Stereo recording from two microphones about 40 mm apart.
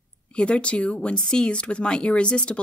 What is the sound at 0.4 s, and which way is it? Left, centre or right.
Speech, left.